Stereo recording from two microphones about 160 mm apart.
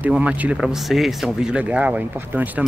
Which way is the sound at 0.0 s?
5° right (ahead or behind).